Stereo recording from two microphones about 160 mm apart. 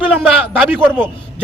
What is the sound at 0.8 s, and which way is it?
Speech, 10° right (ahead or behind).